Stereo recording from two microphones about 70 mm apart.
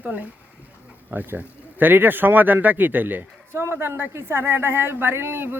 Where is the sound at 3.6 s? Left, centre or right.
Right.